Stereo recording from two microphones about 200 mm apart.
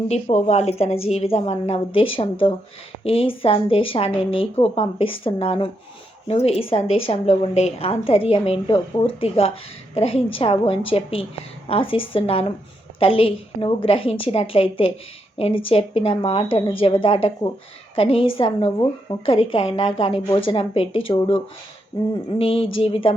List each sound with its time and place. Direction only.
0.1 s a woman's voice: 35° left (ahead or behind)